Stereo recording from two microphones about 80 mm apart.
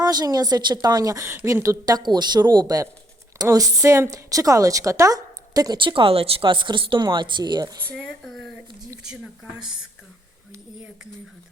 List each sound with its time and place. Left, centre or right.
0.0 s a woman's voice: right
1.8 s a woman's voice: right
5.7 s speech: right
7.9 s a sound: centre
9.0 s a woman's voice: centre